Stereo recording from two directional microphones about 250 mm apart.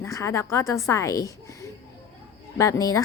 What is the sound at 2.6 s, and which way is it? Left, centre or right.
Speech, centre.